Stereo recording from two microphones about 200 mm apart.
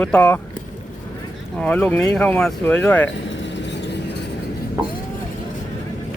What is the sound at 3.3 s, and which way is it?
Vehicle, 65° left (ahead or behind).